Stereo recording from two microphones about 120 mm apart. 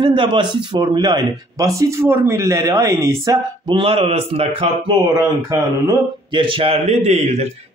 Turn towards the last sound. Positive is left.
turn(degrees=-65)  # may be behind; listen again after turning